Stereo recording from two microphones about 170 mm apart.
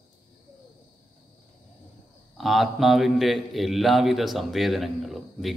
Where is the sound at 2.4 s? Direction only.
Centre (ahead or behind).